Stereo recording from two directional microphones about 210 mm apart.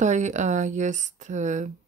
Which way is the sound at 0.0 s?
35° right (ahead or behind).